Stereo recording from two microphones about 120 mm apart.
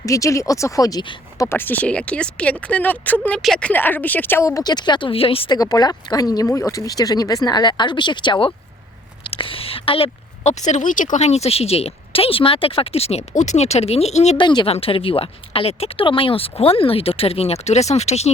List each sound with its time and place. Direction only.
0.0 s speech: 25° left (ahead or behind)
1.4 s speech: 20° left (ahead or behind)
3.4 s speech: centre (ahead or behind)
3.7 s speech: 15° left (ahead or behind); by 5.5 s 50° left (ahead or behind)
5.5 s speech: 30° left (ahead or behind); by 10.1 s 50° left (ahead or behind)
10.4 s speech: 80° left
14.3 s speech: 40° left (ahead or behind)
14.7 s speech: 50° left (ahead or behind)